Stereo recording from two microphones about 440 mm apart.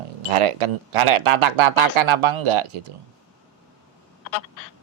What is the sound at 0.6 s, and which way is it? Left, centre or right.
Speech, right.